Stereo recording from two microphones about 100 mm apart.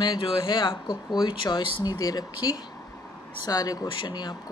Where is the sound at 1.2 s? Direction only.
50° left (ahead or behind).